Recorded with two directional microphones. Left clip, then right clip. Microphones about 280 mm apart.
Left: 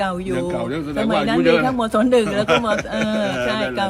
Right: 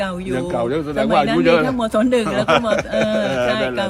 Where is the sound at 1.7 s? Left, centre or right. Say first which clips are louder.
Left 1 dB; centre.